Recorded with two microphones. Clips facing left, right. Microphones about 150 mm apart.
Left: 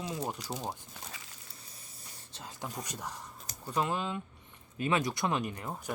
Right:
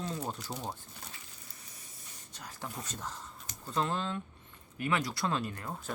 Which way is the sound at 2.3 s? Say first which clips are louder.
Left 2 dB; 20° left (ahead or behind).